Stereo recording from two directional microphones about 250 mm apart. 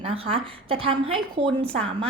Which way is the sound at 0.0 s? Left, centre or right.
Right.